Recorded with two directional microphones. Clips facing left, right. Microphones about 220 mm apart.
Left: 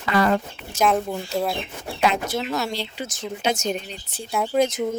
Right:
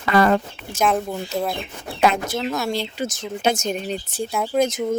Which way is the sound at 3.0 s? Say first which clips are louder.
Right 3 dB; 45° right (ahead or behind).